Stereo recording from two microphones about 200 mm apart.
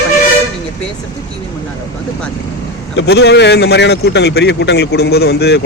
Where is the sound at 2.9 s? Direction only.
55° left (ahead or behind).